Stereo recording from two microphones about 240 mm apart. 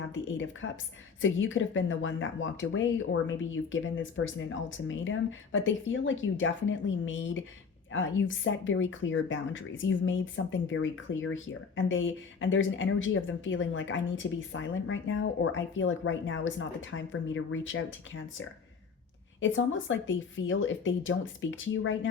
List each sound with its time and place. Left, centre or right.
1.2 s speech: left